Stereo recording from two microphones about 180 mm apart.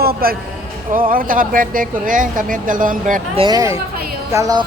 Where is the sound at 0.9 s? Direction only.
50° right (ahead or behind).